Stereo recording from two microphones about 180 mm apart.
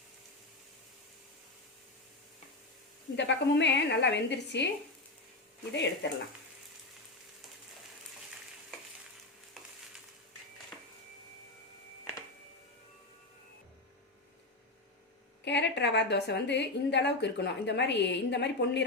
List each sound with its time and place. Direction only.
3.2 s a woman's voice: 75° left (ahead or behind)
5.7 s a woman's voice: 70° left (ahead or behind)
15.4 s a woman's voice: 75° left (ahead or behind)